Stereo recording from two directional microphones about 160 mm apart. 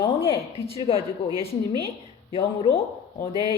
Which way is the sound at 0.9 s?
20° right (ahead or behind).